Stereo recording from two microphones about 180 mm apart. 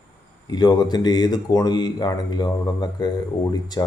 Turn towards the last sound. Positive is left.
turn(degrees=25)  # may be behind; listen again after turning